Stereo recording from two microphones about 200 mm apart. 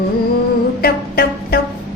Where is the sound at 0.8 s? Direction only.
50° left (ahead or behind).